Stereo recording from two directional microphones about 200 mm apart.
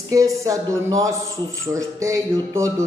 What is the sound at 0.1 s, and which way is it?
Speech, 15° right (ahead or behind).